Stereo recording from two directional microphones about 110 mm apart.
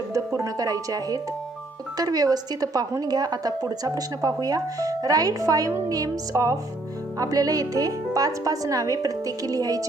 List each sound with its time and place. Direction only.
0.3 s a woman's voice: 35° right (ahead or behind)